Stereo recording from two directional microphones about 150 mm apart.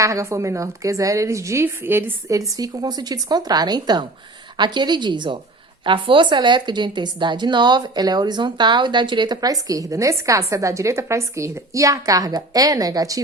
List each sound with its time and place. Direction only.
0.0 s a woman's voice: 20° right (ahead or behind)